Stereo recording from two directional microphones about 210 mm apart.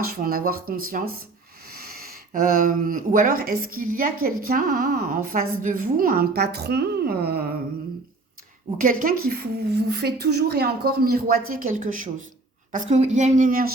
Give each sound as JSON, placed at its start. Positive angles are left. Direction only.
{"t": 0.1, "sound": "a woman's voice", "side_deg": -45}
{"t": 8.8, "sound": "a woman's voice", "side_deg": -40}